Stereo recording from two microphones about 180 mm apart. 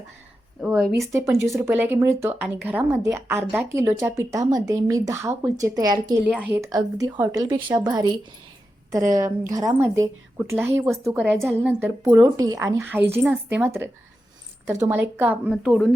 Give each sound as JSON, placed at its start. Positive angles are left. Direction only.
{"t": 0.9, "sound": "a woman's voice", "side_deg": -15}
{"t": 6.2, "sound": "a woman's voice", "side_deg": -10}